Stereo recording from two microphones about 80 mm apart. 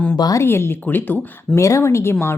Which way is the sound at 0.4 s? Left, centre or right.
Left.